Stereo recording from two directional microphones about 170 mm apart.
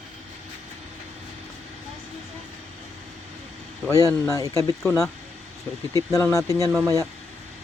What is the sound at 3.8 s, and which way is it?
Speech, 20° left (ahead or behind).